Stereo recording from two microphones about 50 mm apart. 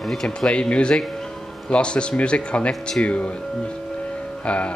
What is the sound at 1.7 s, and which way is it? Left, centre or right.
Speech, left.